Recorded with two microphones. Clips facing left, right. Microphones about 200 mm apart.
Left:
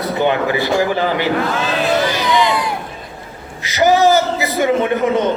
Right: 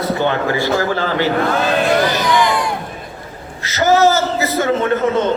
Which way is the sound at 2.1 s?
20° left (ahead or behind).